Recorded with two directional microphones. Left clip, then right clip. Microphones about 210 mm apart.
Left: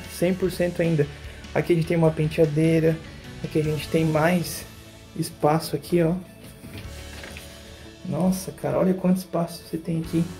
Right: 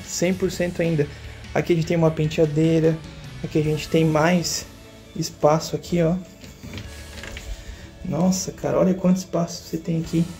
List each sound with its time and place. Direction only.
0.1 s speech: centre (ahead or behind)
3.5 s speech: 15° right (ahead or behind)
5.2 s speech: centre (ahead or behind)
8.1 s speech: 10° right (ahead or behind)